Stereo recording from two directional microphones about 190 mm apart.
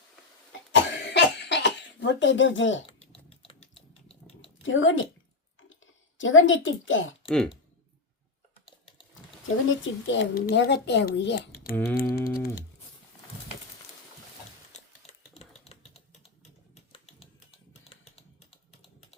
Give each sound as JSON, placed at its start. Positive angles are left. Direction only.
{"t": 0.7, "sound": "cough", "side_deg": 65}
{"t": 2.8, "sound": "typing", "side_deg": 30}
{"t": 4.6, "sound": "a woman's voice", "side_deg": 90}
{"t": 7.3, "sound": "speech", "side_deg": 0}
{"t": 9.6, "sound": "speech", "side_deg": 75}
{"t": 10.3, "sound": "a child's voice", "side_deg": 55}
{"t": 11.9, "sound": "typing", "side_deg": 50}
{"t": 14.7, "sound": "typing", "side_deg": 35}